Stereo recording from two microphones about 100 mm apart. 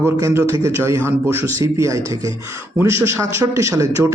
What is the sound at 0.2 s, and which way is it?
A man's voice, 30° right (ahead or behind).